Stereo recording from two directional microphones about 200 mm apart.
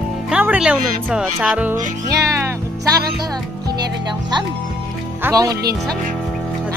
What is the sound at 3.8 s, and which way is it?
Speech, 20° right (ahead or behind).